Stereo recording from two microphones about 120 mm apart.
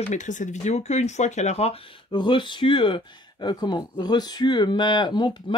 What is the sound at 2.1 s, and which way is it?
Speech, 40° left (ahead or behind).